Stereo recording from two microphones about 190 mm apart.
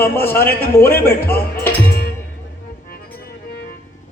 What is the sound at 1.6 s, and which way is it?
Music, 55° left (ahead or behind).